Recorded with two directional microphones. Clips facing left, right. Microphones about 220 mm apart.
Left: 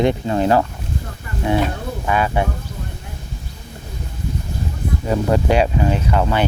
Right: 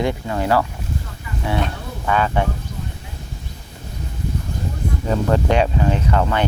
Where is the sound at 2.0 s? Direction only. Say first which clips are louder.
Even; 10° left (ahead or behind).